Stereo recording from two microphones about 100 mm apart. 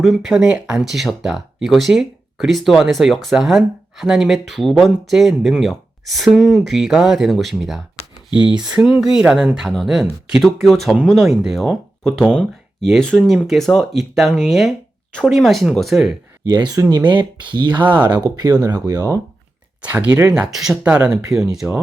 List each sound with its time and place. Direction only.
0.0 s speech: centre (ahead or behind)
16.8 s speech: 30° right (ahead or behind)
17.9 s speech: 45° right (ahead or behind)
19.8 s speech: 15° right (ahead or behind)